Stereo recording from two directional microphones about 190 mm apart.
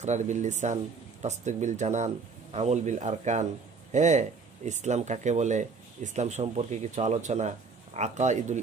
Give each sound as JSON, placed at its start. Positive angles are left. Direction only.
{"t": 0.0, "sound": "speech", "side_deg": -40}